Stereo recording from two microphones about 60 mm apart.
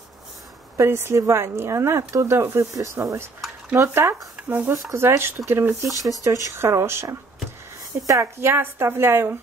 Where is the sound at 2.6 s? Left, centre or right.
Right.